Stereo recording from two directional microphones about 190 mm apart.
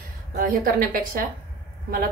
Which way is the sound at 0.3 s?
50° right (ahead or behind).